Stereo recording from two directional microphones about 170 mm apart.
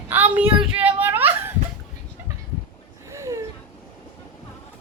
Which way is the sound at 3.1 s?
15° right (ahead or behind).